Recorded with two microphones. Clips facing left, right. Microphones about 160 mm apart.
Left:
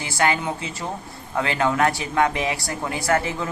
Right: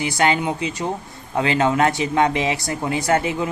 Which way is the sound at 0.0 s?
20° right (ahead or behind).